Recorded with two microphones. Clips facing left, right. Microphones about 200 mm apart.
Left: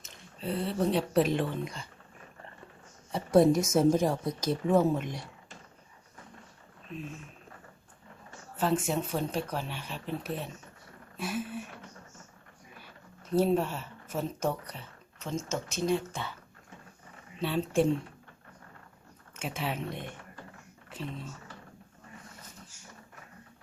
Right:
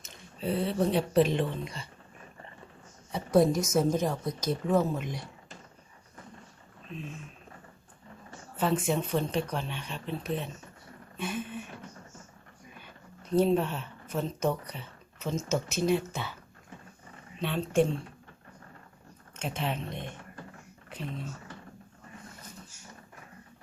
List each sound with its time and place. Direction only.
0.0 s speech: centre (ahead or behind)
3.1 s speech: centre (ahead or behind)
8.5 s speech: centre (ahead or behind)
13.3 s speech: centre (ahead or behind)
17.4 s speech: 5° left (ahead or behind)
19.4 s speech: 5° left (ahead or behind)